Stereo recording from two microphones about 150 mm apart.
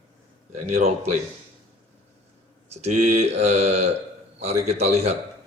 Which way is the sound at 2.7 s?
50° right (ahead or behind).